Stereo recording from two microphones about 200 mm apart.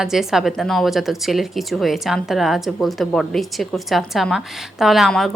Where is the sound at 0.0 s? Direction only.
Centre (ahead or behind).